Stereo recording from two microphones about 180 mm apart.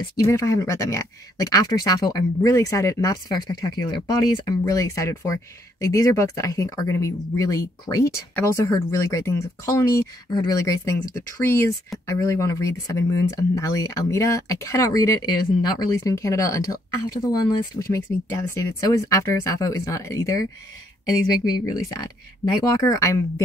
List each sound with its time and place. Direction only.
0.2 s speech: 15° left (ahead or behind)